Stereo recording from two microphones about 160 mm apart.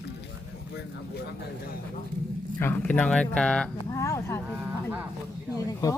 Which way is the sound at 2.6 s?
10° left (ahead or behind).